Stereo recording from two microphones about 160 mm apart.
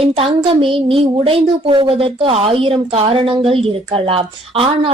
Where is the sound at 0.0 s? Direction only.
35° right (ahead or behind).